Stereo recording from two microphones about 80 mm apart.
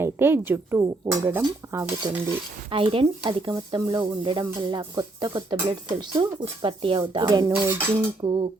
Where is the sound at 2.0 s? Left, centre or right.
Right.